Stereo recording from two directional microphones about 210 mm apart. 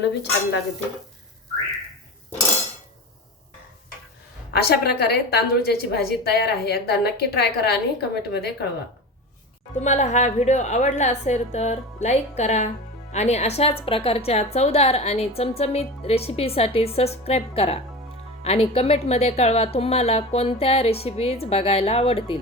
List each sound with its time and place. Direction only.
0.0 s dishes: 55° left (ahead or behind)
4.5 s a woman's voice: 50° left (ahead or behind)
9.8 s a woman's voice: 35° left (ahead or behind)